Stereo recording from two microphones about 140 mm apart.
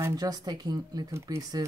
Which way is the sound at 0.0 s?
25° right (ahead or behind).